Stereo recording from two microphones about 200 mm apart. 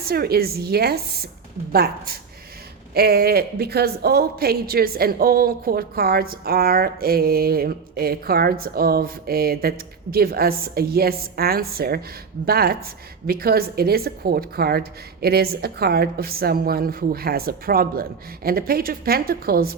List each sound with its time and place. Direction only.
0.0 s a woman's voice: 50° right (ahead or behind)